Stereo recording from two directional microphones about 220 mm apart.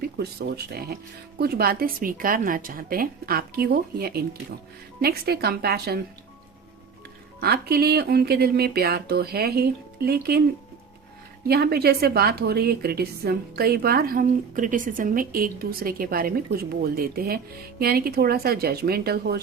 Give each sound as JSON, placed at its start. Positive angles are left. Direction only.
{"t": 0.2, "sound": "a woman's voice", "side_deg": -45}
{"t": 7.3, "sound": "a woman's voice", "side_deg": -45}
{"t": 11.4, "sound": "a woman's voice", "side_deg": -45}